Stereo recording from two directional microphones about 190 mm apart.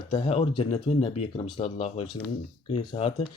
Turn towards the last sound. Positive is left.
turn(degrees=30)  # may be behind; listen again after turning